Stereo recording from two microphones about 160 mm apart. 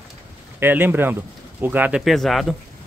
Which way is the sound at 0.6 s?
10° right (ahead or behind).